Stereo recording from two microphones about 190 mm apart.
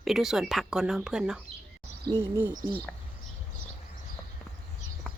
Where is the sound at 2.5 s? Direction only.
45° right (ahead or behind).